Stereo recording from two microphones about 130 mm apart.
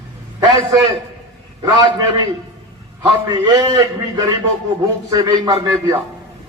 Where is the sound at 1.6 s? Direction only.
30° right (ahead or behind).